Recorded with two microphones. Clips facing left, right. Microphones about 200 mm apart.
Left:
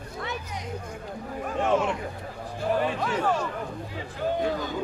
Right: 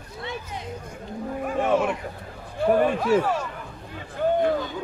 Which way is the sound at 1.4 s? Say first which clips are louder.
Right 2 dB; 10° right (ahead or behind).